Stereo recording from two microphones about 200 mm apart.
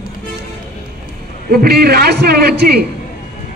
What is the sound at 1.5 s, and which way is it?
A man's voice, 50° right (ahead or behind).